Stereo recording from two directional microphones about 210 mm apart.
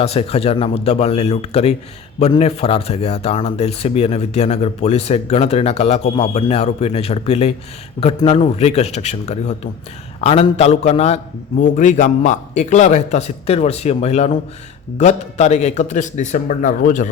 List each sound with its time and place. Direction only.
0.0 s a man's voice: 30° left (ahead or behind)